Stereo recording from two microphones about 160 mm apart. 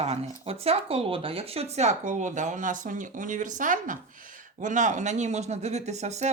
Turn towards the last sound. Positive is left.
turn(degrees=-45)  # may be behind; listen again after turning